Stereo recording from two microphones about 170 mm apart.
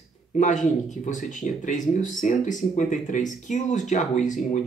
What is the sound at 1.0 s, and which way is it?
Speech, 50° left (ahead or behind).